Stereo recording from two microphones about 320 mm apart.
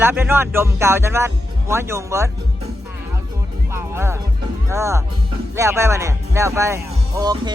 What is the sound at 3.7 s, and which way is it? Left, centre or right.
Music, centre.